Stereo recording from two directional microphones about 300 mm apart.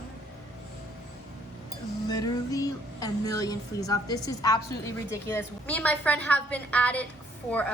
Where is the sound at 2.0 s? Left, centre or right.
Centre.